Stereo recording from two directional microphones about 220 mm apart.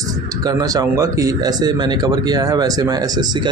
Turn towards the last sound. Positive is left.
turn(degrees=-15)  # may be behind; listen again after turning